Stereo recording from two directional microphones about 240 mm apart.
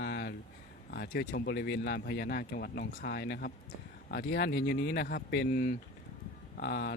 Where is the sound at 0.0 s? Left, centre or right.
Left.